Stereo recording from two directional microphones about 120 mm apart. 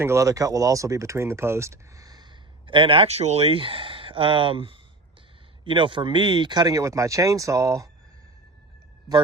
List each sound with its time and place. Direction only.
0.0 s speech: 25° right (ahead or behind)